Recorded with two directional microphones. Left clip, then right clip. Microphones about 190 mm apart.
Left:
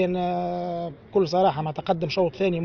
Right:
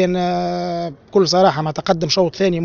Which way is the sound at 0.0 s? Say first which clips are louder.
Right 7 dB; 50° right (ahead or behind).